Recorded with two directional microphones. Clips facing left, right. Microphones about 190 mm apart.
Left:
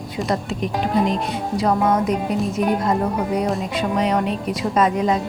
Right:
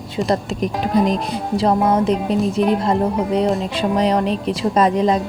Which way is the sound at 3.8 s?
35° right (ahead or behind).